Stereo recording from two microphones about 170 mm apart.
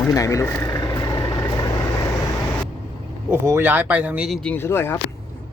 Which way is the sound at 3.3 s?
15° right (ahead or behind).